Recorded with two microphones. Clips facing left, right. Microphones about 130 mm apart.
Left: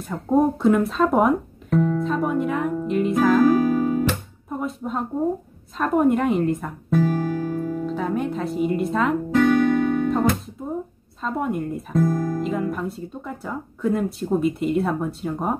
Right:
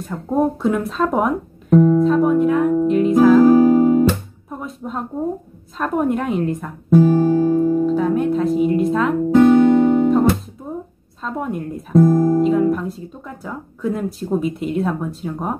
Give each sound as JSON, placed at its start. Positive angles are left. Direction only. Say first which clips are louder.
{"t": 0.0, "sound": "speech", "louder": "even", "side_deg": 0}
{"t": 3.5, "sound": "music", "louder": "right 8 dB", "side_deg": -20}
{"t": 4.5, "sound": "a sound", "louder": "left 2 dB", "side_deg": 0}
{"t": 5.8, "sound": "speech", "louder": "left 1 dB", "side_deg": 0}
{"t": 6.9, "sound": "music", "louder": "right 8 dB", "side_deg": -20}
{"t": 7.8, "sound": "music", "louder": "right 7 dB", "side_deg": 0}
{"t": 9.3, "sound": "music", "louder": "right 8 dB", "side_deg": -25}
{"t": 11.2, "sound": "speech", "louder": "even", "side_deg": 0}
{"t": 12.0, "sound": "speech", "louder": "right 9 dB", "side_deg": -20}
{"t": 12.4, "sound": "speech", "louder": "right 8 dB", "side_deg": 0}